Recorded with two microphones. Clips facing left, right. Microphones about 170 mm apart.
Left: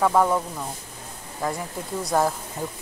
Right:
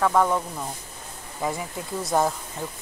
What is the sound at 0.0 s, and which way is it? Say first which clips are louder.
Speech: left 1 dB; 10° left (ahead or behind).